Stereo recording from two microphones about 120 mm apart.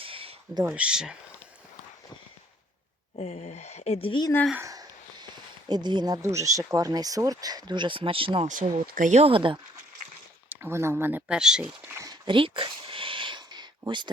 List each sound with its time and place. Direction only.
0.0 s a sound: 50° right (ahead or behind)
0.7 s speech: 10° right (ahead or behind)
3.2 s speech: 70° left (ahead or behind); by 4.2 s 50° left (ahead or behind)
4.6 s a sound: 30° right (ahead or behind)
6.2 s speech: 25° right (ahead or behind); by 8.4 s 50° right (ahead or behind)
8.4 s speech: 90° right
9.2 s speech: 45° right (ahead or behind)
10.5 s speech: 20° right (ahead or behind)
11.3 s speech: 5° right (ahead or behind)
12.0 s a sound: 40° right (ahead or behind)